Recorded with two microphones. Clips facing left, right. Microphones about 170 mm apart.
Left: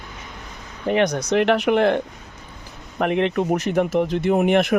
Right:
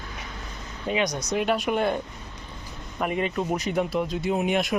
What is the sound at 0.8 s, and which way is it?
Speech, 60° left (ahead or behind).